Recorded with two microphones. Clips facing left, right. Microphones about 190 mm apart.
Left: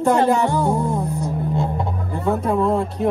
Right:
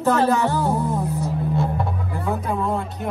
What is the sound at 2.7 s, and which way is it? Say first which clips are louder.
Speech: left 6 dB; 30° left (ahead or behind).